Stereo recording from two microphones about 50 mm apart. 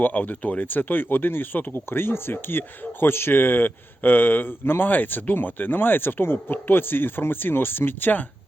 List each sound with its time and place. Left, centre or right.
0.0 s speech: left